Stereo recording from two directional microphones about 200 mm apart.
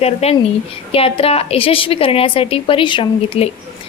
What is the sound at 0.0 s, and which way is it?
A woman's voice, 30° left (ahead or behind).